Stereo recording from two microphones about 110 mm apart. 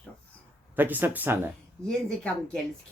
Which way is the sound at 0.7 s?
15° right (ahead or behind).